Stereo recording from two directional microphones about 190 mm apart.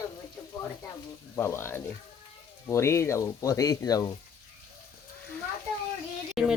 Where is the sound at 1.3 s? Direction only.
10° left (ahead or behind).